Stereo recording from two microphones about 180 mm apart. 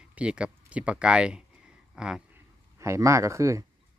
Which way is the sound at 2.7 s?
15° right (ahead or behind).